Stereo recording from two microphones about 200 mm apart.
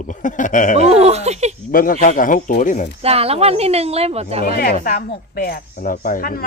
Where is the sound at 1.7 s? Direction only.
45° left (ahead or behind).